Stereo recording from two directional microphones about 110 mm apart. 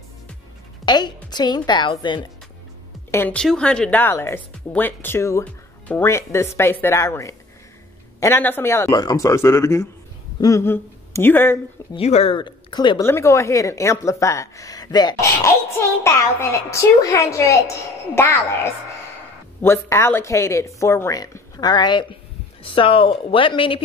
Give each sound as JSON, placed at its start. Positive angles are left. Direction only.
{"t": 0.8, "sound": "a woman's voice", "side_deg": 40}
{"t": 3.1, "sound": "speech", "side_deg": 20}
{"t": 3.3, "sound": "a woman's voice", "side_deg": 10}
{"t": 4.0, "sound": "a woman's voice", "side_deg": 20}
{"t": 5.4, "sound": "music", "side_deg": 15}
{"t": 6.0, "sound": "a woman's voice", "side_deg": 25}
{"t": 8.9, "sound": "a woman's voice", "side_deg": 35}
{"t": 12.0, "sound": "speech", "side_deg": 65}
{"t": 12.4, "sound": "speech", "side_deg": 45}
{"t": 13.0, "sound": "a woman's voice", "side_deg": 25}
{"t": 15.1, "sound": "a woman's voice", "side_deg": 30}